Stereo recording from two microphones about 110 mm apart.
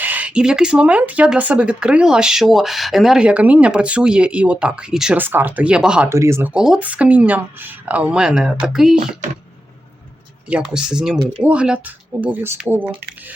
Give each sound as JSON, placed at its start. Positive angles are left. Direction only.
{"t": 0.0, "sound": "speech", "side_deg": -15}
{"t": 6.1, "sound": "speech", "side_deg": -25}
{"t": 6.5, "sound": "speech", "side_deg": -10}
{"t": 10.5, "sound": "speech", "side_deg": -5}